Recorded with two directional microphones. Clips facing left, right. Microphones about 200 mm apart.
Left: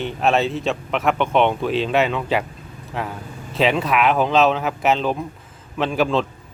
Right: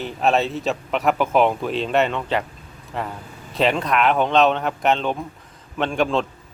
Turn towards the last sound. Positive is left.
turn(degrees=0)  # may be behind; listen again after turning